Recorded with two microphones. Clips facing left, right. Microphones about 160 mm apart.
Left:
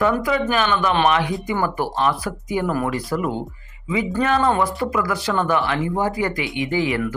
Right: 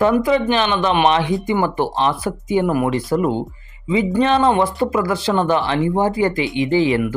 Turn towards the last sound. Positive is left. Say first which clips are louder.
# right 5 dB
turn(degrees=-25)  # may be behind; listen again after turning